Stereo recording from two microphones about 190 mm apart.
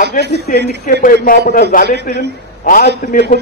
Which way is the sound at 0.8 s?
55° left (ahead or behind).